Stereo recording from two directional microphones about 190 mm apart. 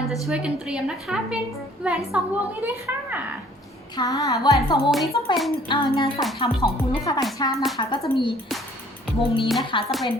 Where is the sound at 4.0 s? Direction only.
20° left (ahead or behind).